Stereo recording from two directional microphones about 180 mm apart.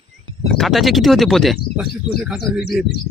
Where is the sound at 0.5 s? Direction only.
Centre (ahead or behind).